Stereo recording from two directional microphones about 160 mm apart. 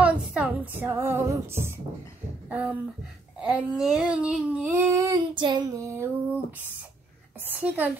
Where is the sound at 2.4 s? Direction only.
10° right (ahead or behind).